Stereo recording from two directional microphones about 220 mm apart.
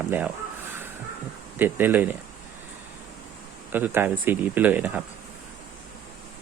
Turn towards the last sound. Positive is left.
turn(degrees=-5)  # may be behind; listen again after turning